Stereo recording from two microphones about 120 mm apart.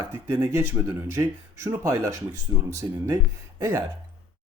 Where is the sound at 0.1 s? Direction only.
20° right (ahead or behind).